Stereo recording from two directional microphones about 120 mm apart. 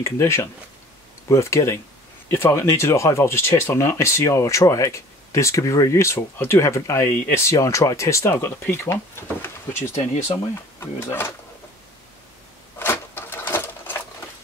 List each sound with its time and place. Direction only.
0.0 s speech: 20° left (ahead or behind)
10.8 s speech: 20° left (ahead or behind)
12.7 s sewing machine: 20° left (ahead or behind)